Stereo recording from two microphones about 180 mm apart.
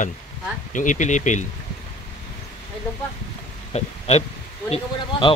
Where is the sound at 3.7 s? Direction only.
35° left (ahead or behind).